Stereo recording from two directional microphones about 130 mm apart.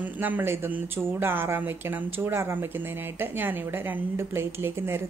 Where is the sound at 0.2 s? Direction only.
15° right (ahead or behind).